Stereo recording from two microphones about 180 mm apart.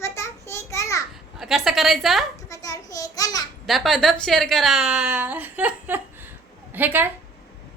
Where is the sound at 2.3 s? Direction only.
20° left (ahead or behind).